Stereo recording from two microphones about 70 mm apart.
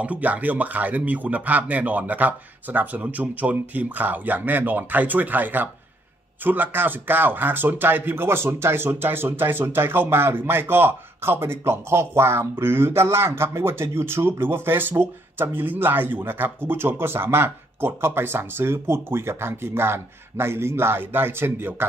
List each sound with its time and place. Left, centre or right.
0.0 s speech: right